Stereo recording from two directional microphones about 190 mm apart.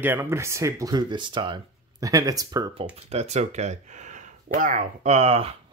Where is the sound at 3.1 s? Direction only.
35° right (ahead or behind).